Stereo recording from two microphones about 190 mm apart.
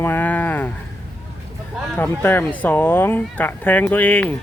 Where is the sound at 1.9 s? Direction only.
10° left (ahead or behind).